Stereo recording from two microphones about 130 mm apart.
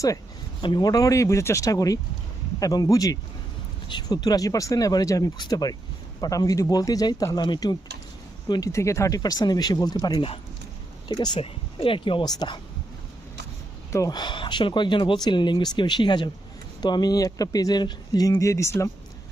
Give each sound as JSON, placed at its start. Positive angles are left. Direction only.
{"t": 0.6, "sound": "speech", "side_deg": 35}
{"t": 11.1, "sound": "speech", "side_deg": 45}
{"t": 13.9, "sound": "speech", "side_deg": 30}